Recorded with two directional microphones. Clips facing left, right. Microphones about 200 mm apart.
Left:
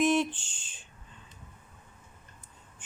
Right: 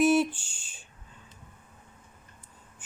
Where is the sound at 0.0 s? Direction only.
10° right (ahead or behind).